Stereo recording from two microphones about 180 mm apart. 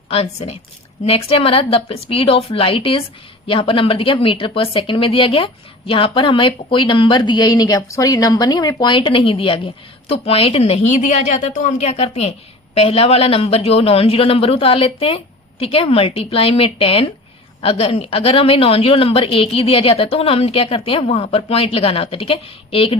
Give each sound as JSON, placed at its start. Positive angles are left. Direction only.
{"t": 0.1, "sound": "a woman's voice", "side_deg": 35}